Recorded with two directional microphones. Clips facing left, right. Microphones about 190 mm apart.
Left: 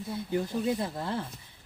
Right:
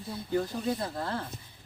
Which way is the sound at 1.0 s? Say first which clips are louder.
Left 1 dB; 20° left (ahead or behind).